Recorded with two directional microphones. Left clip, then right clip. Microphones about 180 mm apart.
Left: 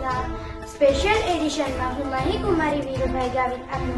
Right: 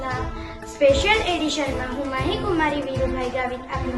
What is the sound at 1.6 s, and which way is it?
A woman's voice, centre (ahead or behind).